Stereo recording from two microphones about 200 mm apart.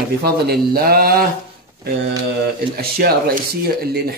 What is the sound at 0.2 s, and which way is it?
Speech, 50° right (ahead or behind).